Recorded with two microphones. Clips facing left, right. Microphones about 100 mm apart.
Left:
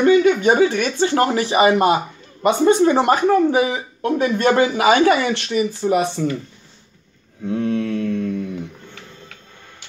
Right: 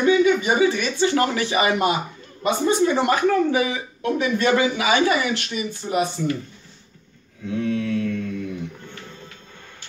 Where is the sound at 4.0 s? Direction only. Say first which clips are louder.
Left 3 dB; 45° left (ahead or behind).